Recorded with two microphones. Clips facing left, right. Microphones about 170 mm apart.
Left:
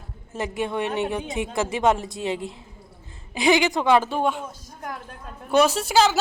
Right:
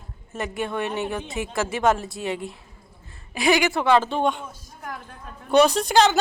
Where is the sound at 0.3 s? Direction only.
20° left (ahead or behind); by 4.4 s 5° left (ahead or behind).